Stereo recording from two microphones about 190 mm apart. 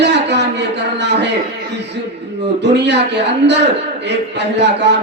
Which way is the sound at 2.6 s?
65° right (ahead or behind).